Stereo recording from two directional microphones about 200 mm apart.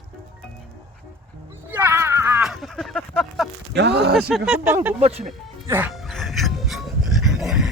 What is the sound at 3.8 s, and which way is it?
Speech, 55° right (ahead or behind).